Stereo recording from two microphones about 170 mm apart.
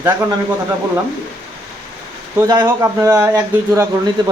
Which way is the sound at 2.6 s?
15° right (ahead or behind).